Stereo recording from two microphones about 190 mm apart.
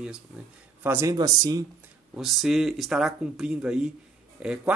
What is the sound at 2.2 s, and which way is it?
Speech, centre (ahead or behind).